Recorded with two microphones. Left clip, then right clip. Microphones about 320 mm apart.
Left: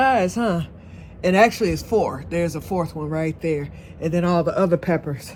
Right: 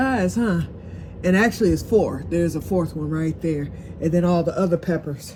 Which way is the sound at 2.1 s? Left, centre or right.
Left.